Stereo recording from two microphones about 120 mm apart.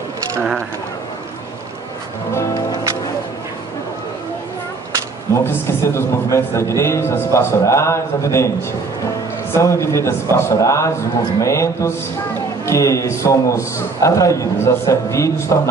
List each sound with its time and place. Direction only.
5.3 s a man's voice: 20° left (ahead or behind)
9.5 s a man's voice: 25° left (ahead or behind)